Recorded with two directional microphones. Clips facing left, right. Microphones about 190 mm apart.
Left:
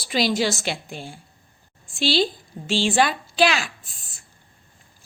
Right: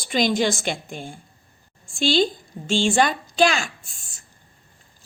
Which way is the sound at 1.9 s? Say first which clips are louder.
Right 2 dB; centre (ahead or behind).